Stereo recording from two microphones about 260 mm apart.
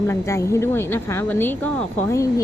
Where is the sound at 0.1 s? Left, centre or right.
Centre.